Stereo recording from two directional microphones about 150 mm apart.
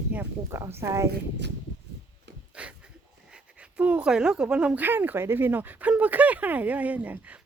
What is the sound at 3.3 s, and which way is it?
Speech, 5° right (ahead or behind).